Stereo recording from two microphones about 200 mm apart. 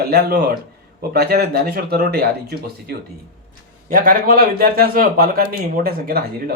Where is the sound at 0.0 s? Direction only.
55° right (ahead or behind).